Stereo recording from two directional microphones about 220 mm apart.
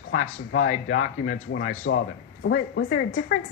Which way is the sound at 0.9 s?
75° left (ahead or behind).